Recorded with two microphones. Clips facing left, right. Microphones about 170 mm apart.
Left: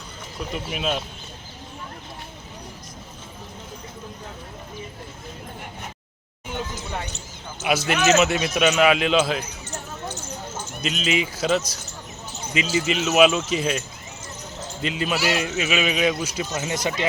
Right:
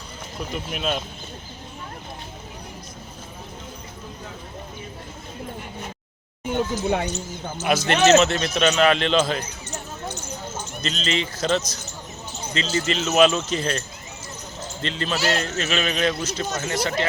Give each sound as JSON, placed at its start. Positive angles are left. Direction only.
{"t": 0.5, "sound": "speech", "side_deg": 0}
{"t": 6.5, "sound": "a sound", "side_deg": -55}
{"t": 7.6, "sound": "speech", "side_deg": 5}
{"t": 10.8, "sound": "speech", "side_deg": 10}